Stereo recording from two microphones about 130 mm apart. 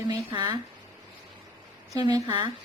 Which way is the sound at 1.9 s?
30° right (ahead or behind).